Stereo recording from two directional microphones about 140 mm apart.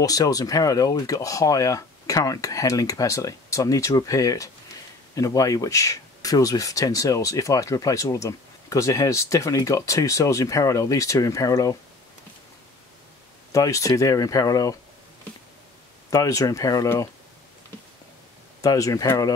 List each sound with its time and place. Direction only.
0.0 s speech: 25° left (ahead or behind)
13.5 s speech: 25° left (ahead or behind)
16.1 s speech: 25° left (ahead or behind)
18.6 s speech: 25° left (ahead or behind)